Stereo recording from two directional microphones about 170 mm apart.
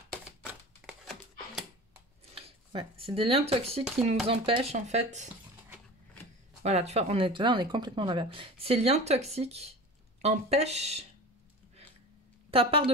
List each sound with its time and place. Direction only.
0.8 s a sound: centre (ahead or behind)
2.3 s speech: 35° right (ahead or behind)
6.6 s speech: 40° right (ahead or behind)
12.4 s a woman's voice: 35° right (ahead or behind)